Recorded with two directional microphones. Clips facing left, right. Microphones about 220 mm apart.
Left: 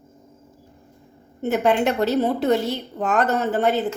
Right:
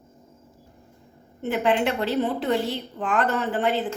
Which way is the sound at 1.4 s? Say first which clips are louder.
Left 3 dB; 45° left (ahead or behind).